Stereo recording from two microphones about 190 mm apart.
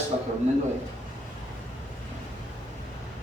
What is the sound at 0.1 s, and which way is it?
Speech, 35° right (ahead or behind).